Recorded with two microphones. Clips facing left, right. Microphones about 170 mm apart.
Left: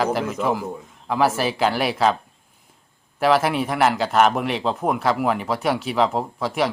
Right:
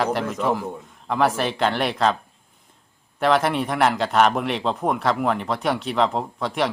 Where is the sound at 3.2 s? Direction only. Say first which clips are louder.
Left 1 dB; 5° left (ahead or behind).